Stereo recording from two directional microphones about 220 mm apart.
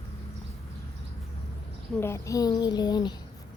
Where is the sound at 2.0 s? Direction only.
15° left (ahead or behind).